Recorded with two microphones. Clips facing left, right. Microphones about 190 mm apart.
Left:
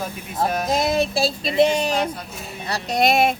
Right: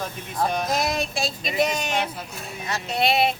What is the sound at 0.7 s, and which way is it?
A woman's voice, 25° left (ahead or behind).